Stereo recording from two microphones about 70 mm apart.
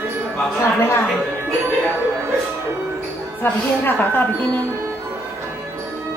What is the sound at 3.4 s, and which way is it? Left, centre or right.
Speech, left.